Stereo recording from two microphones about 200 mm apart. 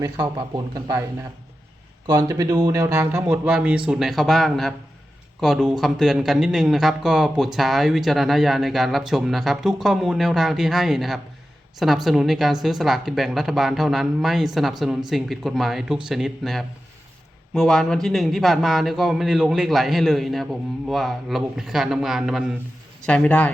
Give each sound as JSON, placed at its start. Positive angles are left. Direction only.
{"t": 0.0, "sound": "speech", "side_deg": -20}
{"t": 2.0, "sound": "speech", "side_deg": -15}